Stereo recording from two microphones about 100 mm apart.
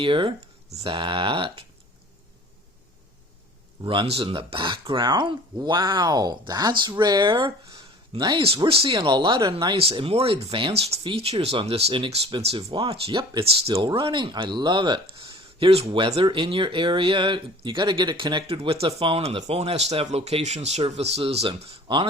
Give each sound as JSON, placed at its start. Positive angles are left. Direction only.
{"t": 0.0, "sound": "speech", "side_deg": -60}
{"t": 0.9, "sound": "speech", "side_deg": -55}
{"t": 3.8, "sound": "speech", "side_deg": -65}
{"t": 8.4, "sound": "speech", "side_deg": -65}
{"t": 9.7, "sound": "speech", "side_deg": -65}
{"t": 10.8, "sound": "speech", "side_deg": -90}
{"t": 11.0, "sound": "speech", "side_deg": -75}
{"t": 13.4, "sound": "speech", "side_deg": -75}
{"t": 13.8, "sound": "speech", "side_deg": -55}
{"t": 16.2, "sound": "speech", "side_deg": -55}
{"t": 18.4, "sound": "speech", "side_deg": -65}